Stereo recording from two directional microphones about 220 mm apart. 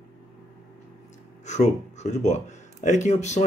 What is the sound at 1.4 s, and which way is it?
Speech, 30° left (ahead or behind).